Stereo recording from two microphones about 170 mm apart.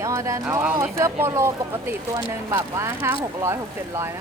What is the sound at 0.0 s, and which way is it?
Speech, 15° right (ahead or behind).